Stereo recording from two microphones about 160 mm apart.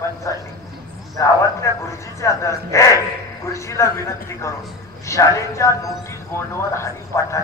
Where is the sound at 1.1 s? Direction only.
20° left (ahead or behind).